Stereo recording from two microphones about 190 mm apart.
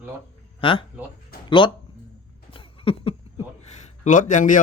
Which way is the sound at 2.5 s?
30° left (ahead or behind).